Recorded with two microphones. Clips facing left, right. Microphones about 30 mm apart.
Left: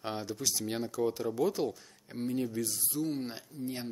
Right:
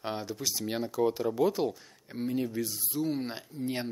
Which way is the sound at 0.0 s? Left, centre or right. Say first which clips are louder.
Right 1 dB; centre.